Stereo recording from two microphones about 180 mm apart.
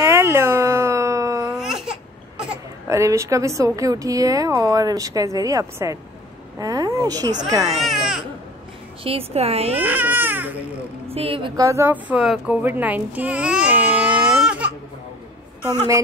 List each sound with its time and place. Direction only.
0.0 s a sound: 15° right (ahead or behind)
1.4 s baby cry: 5° right (ahead or behind)
2.9 s a woman's voice: 15° right (ahead or behind)
7.8 s baby cry: centre (ahead or behind)
9.0 s a woman's voice: 35° right (ahead or behind)
9.8 s baby cry: 10° right (ahead or behind)
11.1 s a woman's voice: 30° right (ahead or behind); by 14.6 s 5° right (ahead or behind)